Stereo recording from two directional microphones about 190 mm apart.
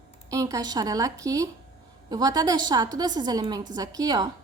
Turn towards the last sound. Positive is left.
turn(degrees=-20)  # may be behind; listen again after turning